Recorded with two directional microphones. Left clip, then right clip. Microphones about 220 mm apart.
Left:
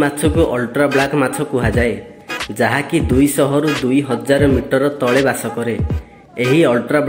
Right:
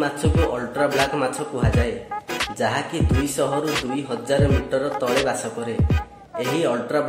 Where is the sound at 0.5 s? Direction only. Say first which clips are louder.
Left 6 dB; 20° left (ahead or behind).